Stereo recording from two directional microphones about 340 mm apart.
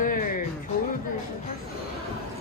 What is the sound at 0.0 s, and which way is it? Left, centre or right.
Music, left.